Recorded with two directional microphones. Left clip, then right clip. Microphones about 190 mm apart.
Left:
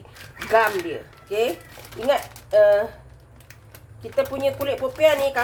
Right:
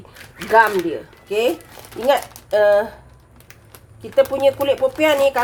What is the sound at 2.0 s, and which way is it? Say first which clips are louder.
Speech: right 4 dB; 65° right (ahead or behind).